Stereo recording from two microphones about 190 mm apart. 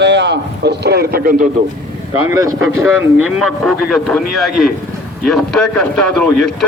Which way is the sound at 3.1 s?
Centre (ahead or behind).